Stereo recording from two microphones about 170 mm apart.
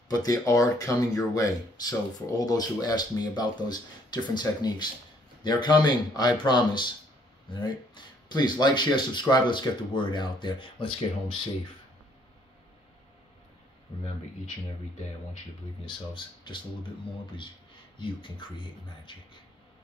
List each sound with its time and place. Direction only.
0.1 s speech: 20° left (ahead or behind)
15.8 s speech: 30° left (ahead or behind)
17.9 s speech: 30° left (ahead or behind)